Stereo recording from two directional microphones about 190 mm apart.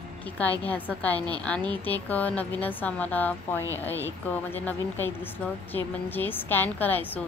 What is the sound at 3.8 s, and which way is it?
Speech, 10° left (ahead or behind).